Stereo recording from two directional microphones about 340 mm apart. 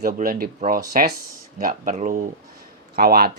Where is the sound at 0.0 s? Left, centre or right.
Right.